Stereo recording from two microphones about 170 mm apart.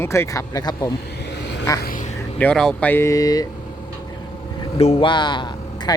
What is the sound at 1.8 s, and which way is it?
Quack, 50° left (ahead or behind).